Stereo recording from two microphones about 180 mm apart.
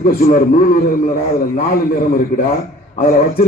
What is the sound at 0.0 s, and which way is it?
A man's voice, 55° left (ahead or behind).